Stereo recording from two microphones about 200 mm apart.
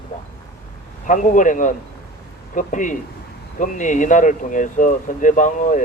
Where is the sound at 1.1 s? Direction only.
40° left (ahead or behind).